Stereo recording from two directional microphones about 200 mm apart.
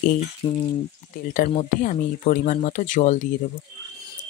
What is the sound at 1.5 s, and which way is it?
Speech, 40° left (ahead or behind).